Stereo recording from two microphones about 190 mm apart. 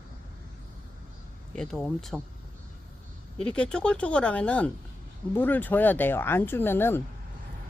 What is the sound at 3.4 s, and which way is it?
Speech, 5° left (ahead or behind).